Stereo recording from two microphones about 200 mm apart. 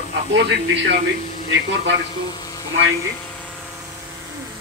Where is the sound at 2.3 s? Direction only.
20° left (ahead or behind).